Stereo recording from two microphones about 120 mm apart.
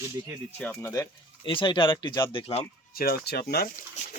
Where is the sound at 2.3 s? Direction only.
50° left (ahead or behind).